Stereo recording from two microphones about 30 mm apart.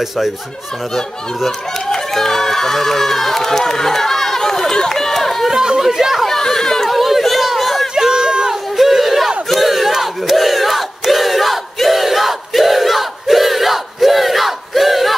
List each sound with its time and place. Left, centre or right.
1.9 s speech: centre
5.5 s chatter: right
5.8 s speech: centre
6.4 s chatter: centre
6.9 s chatter: centre
7.4 s a sound: centre
8.1 s run: right
8.7 s a sound: centre
9.5 s battle cry: centre
9.9 s crowd: centre